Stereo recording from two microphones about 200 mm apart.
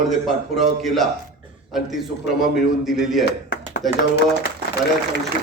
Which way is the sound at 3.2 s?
50° left (ahead or behind).